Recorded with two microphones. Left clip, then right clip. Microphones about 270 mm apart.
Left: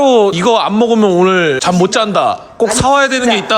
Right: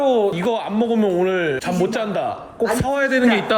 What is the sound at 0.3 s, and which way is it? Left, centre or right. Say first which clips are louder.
Speech: left 10 dB; centre.